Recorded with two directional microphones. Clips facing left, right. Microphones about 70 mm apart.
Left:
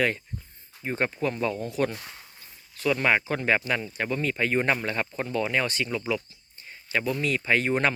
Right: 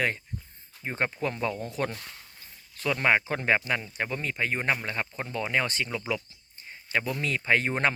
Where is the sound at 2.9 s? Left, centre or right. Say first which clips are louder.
Right 2 dB; right.